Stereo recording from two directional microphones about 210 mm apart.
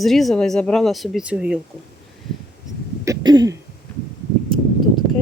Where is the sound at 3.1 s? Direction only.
20° right (ahead or behind).